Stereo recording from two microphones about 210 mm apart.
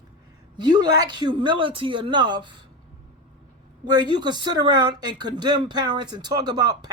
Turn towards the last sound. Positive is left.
turn(degrees=-20)  # may be behind; listen again after turning